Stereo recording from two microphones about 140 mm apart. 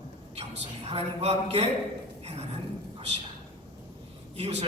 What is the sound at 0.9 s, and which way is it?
Speech, 50° right (ahead or behind).